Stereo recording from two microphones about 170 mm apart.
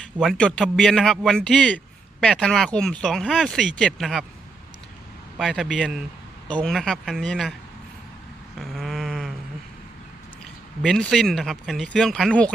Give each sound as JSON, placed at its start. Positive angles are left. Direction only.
{"t": 0.2, "sound": "speech", "side_deg": 5}
{"t": 5.4, "sound": "speech", "side_deg": 0}
{"t": 8.5, "sound": "a sound", "side_deg": 0}
{"t": 10.8, "sound": "speech", "side_deg": 0}